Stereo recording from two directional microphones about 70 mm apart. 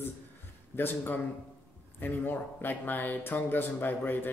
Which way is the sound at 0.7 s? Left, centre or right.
Left.